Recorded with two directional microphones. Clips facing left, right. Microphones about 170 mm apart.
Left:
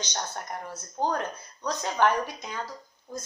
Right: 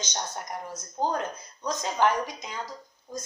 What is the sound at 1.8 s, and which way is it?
Speech, 15° right (ahead or behind).